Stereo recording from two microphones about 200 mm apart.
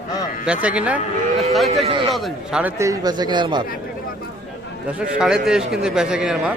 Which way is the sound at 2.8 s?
15° right (ahead or behind).